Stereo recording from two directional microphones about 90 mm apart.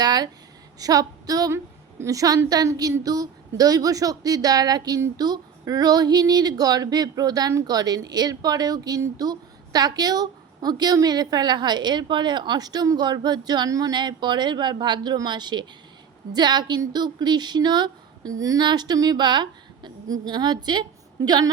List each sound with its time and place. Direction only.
0.0 s speech: 50° right (ahead or behind)
0.8 s a sound: 45° right (ahead or behind)
2.0 s a woman's voice: 40° right (ahead or behind)
18.6 s a woman's voice: 50° right (ahead or behind)